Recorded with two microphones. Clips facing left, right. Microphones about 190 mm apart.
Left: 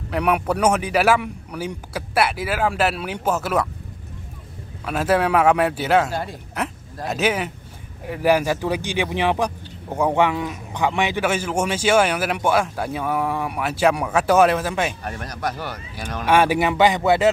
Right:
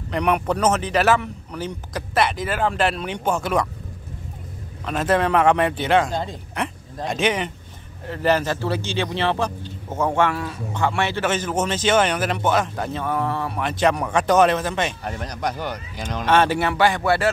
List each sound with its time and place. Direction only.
0.1 s speech: 5° left (ahead or behind)
4.8 s speech: 5° left (ahead or behind)
15.0 s speech: 15° right (ahead or behind)
16.3 s speech: 10° left (ahead or behind)